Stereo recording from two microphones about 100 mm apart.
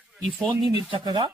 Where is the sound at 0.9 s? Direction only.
55° right (ahead or behind).